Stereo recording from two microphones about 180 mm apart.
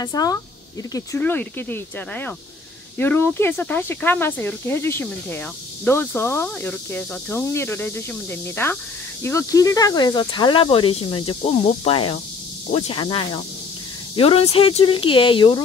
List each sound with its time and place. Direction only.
0.0 s speech: 20° left (ahead or behind)